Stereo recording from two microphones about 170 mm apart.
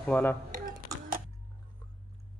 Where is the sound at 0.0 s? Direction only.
10° left (ahead or behind).